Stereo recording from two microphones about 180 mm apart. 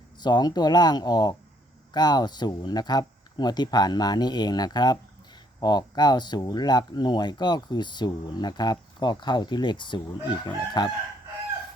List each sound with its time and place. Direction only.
0.2 s speech: 25° left (ahead or behind)